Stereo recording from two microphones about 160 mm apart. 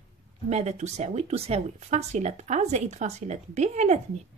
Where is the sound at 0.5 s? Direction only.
45° right (ahead or behind).